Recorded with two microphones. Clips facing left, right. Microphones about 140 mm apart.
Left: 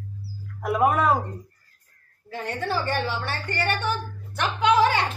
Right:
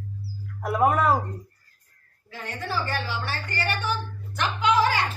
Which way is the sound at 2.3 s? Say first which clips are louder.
Left 4 dB; 25° left (ahead or behind).